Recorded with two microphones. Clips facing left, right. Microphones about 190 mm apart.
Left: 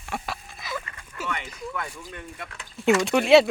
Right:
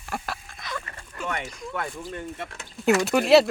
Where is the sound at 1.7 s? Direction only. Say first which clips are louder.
Right 4 dB; 35° right (ahead or behind).